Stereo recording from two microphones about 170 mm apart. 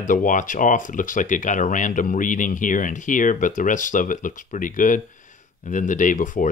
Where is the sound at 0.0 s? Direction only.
50° left (ahead or behind).